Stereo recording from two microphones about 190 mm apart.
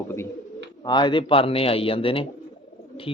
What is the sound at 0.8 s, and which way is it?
A man's voice, 25° left (ahead or behind).